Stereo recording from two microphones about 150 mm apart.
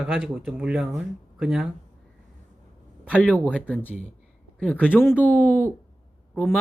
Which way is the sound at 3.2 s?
10° left (ahead or behind).